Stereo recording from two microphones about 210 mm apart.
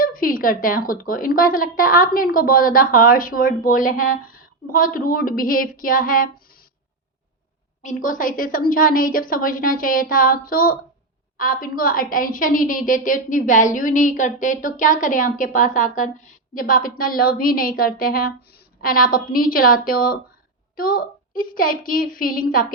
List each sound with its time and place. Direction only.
0.0 s a woman's voice: 40° left (ahead or behind)
7.8 s a woman's voice: 35° left (ahead or behind)